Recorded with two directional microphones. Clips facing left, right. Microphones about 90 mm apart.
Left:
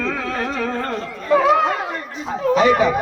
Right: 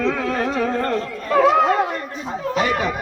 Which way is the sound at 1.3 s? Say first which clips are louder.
Even; 5° left (ahead or behind).